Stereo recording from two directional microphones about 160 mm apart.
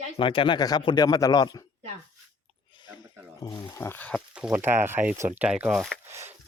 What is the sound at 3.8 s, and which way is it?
Speech, 10° left (ahead or behind).